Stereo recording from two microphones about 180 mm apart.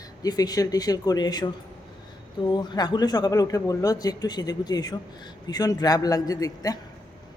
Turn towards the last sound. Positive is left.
turn(degrees=20)  # may be behind; listen again after turning